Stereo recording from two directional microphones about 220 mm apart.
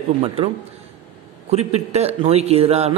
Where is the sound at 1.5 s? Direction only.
30° right (ahead or behind).